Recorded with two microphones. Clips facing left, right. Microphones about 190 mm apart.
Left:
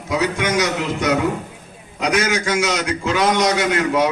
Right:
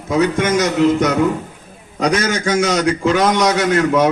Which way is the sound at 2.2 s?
50° right (ahead or behind).